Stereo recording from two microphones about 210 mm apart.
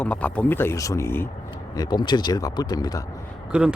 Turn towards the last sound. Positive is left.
turn(degrees=-5)  # may be behind; listen again after turning